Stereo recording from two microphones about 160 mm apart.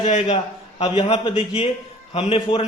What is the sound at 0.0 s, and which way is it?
A man's voice, 40° left (ahead or behind).